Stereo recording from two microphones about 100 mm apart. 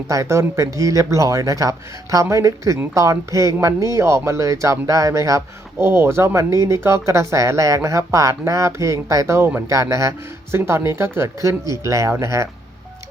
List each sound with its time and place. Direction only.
0.1 s speech: 30° right (ahead or behind)